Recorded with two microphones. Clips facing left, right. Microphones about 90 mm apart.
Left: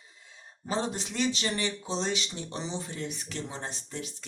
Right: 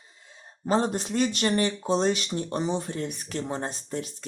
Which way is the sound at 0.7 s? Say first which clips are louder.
Right 7 dB; 50° right (ahead or behind).